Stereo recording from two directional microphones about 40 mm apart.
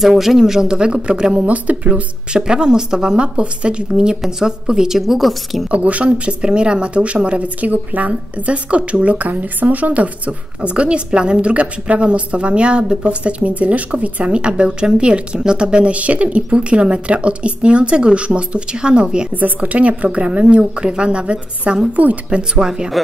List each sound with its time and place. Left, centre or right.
0.0 s a woman's voice: centre
1.3 s speech: right
2.3 s a woman's voice: right; by 5.7 s centre
5.7 s a woman's voice: right
7.7 s speech: right
8.1 s a woman's voice: right
19.3 s a woman's voice: right
23.0 s speech: centre